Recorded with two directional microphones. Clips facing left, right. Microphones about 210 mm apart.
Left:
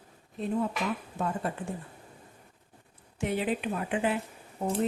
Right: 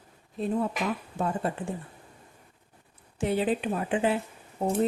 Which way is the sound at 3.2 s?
30° right (ahead or behind).